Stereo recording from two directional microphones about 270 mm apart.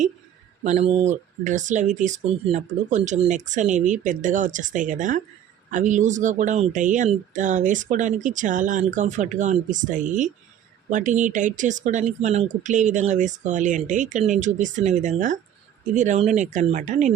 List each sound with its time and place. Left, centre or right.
0.6 s speech: right